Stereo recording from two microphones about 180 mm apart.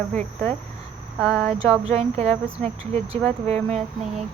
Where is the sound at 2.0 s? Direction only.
35° right (ahead or behind).